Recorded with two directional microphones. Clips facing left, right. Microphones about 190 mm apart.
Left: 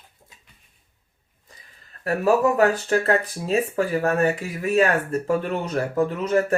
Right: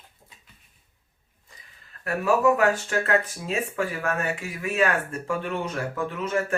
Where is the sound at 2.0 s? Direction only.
35° left (ahead or behind).